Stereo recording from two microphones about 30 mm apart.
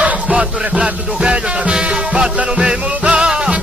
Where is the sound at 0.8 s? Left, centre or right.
Right.